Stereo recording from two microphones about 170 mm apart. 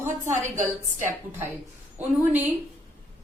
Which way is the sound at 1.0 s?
15° right (ahead or behind).